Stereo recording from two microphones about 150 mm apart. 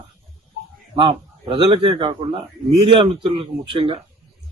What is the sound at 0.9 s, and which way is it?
Speech, 30° right (ahead or behind).